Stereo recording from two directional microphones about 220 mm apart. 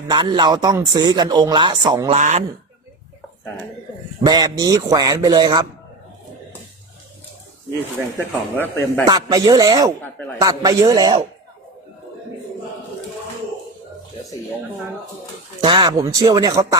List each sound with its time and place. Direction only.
0.1 s speech: 20° right (ahead or behind)
2.1 s speech: 30° right (ahead or behind)
4.3 s a man's voice: 20° right (ahead or behind)
8.3 s speech: 10° left (ahead or behind)
9.0 s a man's voice: 20° right (ahead or behind)
15.6 s a man's voice: 20° right (ahead or behind)